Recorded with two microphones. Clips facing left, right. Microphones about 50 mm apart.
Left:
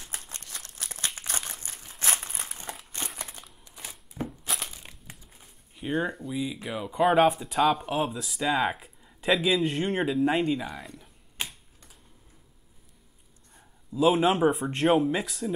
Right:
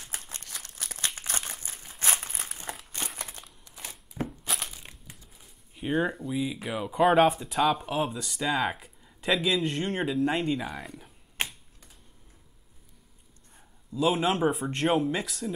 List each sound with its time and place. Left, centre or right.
0.5 s a sound: centre
1.0 s crumpling: left
2.0 s crumpling: centre
2.7 s a sound: centre
3.7 s crushing: centre
5.8 s speech: centre
11.4 s typing: right
13.6 s speech: centre